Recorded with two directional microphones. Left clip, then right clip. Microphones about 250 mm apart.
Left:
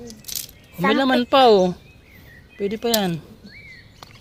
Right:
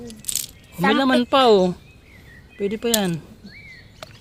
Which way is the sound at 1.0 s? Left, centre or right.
Centre.